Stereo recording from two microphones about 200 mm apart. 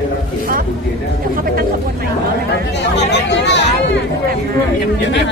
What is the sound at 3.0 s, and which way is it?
Speech, 60° left (ahead or behind).